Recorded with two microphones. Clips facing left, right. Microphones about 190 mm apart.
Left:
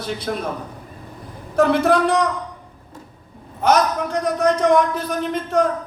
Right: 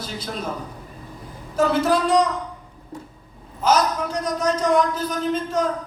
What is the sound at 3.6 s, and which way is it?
A man's voice, 60° left (ahead or behind).